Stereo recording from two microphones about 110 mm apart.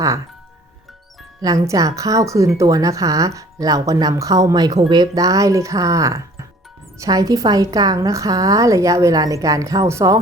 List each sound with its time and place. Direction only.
1.4 s speech: 30° right (ahead or behind)